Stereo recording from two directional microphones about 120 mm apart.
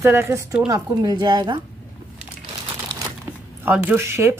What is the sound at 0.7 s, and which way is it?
Speech, 35° right (ahead or behind).